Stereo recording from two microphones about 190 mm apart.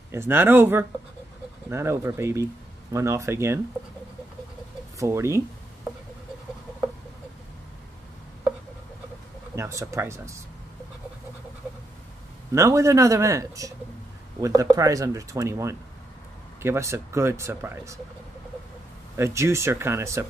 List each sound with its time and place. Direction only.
0.1 s speech: 10° right (ahead or behind)
4.9 s speech: 15° right (ahead or behind)
9.6 s speech: 15° right (ahead or behind)
12.5 s speech: 15° right (ahead or behind)
19.1 s speech: 15° right (ahead or behind)